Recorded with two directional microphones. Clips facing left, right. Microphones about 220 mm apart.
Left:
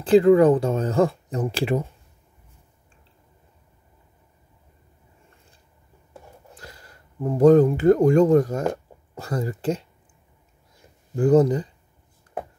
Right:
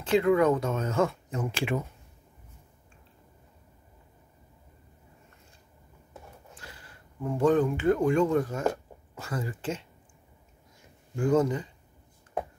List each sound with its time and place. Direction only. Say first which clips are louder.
0.0 s speech: left 8 dB; 35° left (ahead or behind)
6.5 s speech: left 4 dB; 40° left (ahead or behind)
11.1 s speech: left 7 dB; 35° left (ahead or behind)